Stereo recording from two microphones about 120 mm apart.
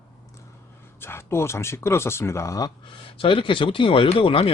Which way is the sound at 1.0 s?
20° left (ahead or behind).